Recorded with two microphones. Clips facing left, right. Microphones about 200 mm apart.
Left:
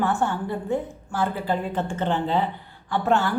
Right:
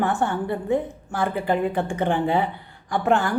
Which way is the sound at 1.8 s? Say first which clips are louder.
Right 2 dB; 15° right (ahead or behind).